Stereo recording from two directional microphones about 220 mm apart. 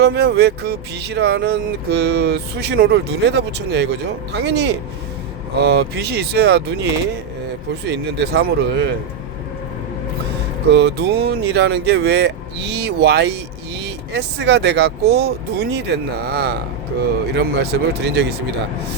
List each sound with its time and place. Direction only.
0.0 s speech: 45° right (ahead or behind)
7.9 s speech: 50° right (ahead or behind)
10.7 s speech: 50° right (ahead or behind)